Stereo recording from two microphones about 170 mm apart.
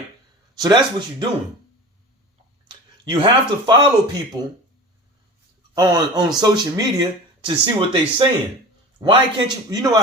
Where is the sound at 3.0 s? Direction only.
30° right (ahead or behind).